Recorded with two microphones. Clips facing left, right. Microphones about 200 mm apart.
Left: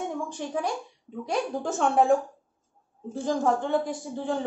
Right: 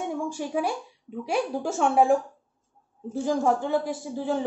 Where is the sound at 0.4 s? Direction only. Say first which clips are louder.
Even; 10° right (ahead or behind).